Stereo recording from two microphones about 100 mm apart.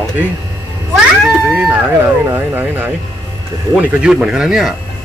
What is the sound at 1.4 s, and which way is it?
Speech, 20° right (ahead or behind).